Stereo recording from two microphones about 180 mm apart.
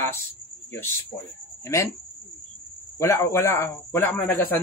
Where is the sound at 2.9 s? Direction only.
15° left (ahead or behind).